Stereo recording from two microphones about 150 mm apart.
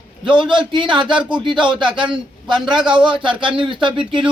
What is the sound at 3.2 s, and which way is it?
Speech, 35° right (ahead or behind).